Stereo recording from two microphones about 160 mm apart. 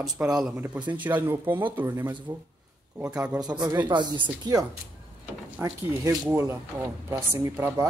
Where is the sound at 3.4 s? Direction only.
25° right (ahead or behind).